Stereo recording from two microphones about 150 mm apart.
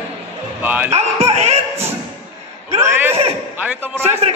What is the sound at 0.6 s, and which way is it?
Speech, 10° right (ahead or behind).